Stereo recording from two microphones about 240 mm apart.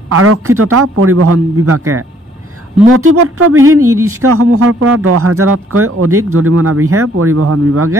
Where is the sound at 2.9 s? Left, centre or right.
Right.